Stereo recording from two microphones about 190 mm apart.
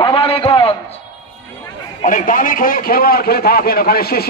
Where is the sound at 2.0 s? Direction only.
45° left (ahead or behind).